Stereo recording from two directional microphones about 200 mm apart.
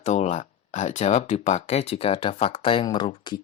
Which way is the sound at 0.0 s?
35° left (ahead or behind).